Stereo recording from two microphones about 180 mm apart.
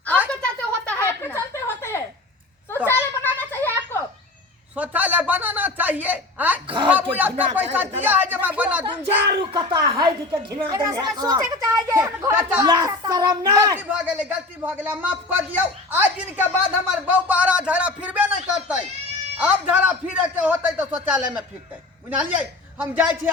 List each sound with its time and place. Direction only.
0.3 s a sound: 5° left (ahead or behind)
4.7 s a sound: 10° right (ahead or behind)
6.8 s a child's voice: 10° right (ahead or behind)
8.8 s a woman's voice: 25° right (ahead or behind)
12.6 s a child's voice: 20° right (ahead or behind)
19.4 s a child's voice: 10° right (ahead or behind)